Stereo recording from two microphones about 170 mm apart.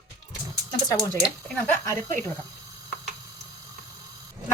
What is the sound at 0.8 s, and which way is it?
Speech, 20° left (ahead or behind).